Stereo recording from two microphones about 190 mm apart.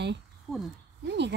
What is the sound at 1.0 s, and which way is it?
Speech, 65° right (ahead or behind).